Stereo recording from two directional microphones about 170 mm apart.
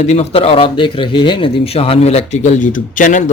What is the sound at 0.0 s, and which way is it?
Speech, 40° left (ahead or behind).